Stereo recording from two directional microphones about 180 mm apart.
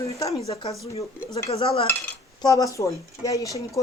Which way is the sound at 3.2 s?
20° left (ahead or behind).